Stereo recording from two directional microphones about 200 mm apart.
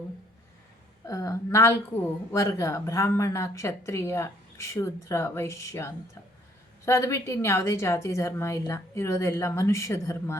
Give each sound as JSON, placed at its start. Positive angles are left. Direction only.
{"t": 1.0, "sound": "speech", "side_deg": 15}